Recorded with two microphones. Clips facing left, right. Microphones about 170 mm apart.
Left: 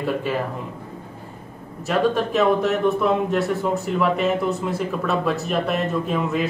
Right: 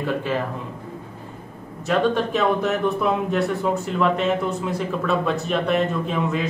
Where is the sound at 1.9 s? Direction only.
Centre (ahead or behind).